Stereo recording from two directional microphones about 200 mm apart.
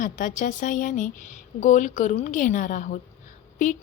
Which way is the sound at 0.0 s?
40° left (ahead or behind).